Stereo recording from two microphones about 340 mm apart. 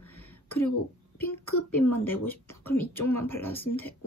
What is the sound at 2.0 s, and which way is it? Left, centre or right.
Speech, centre.